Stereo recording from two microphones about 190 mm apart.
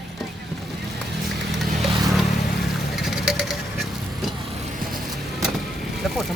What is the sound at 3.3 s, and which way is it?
Patter, centre (ahead or behind).